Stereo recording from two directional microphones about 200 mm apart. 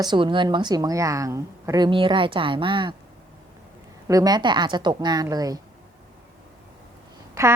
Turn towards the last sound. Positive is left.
turn(degrees=-15)  # may be behind; listen again after turning